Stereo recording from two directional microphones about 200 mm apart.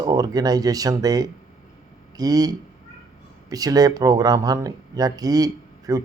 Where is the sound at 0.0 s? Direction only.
20° right (ahead or behind).